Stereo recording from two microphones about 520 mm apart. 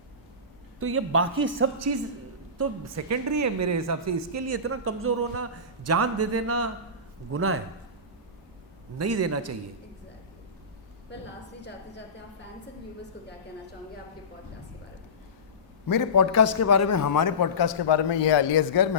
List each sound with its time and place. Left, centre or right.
0.8 s a woman's voice: right
9.0 s a woman's voice: right
11.1 s a woman's voice: centre
13.2 s a sound: centre
15.9 s a man's voice: left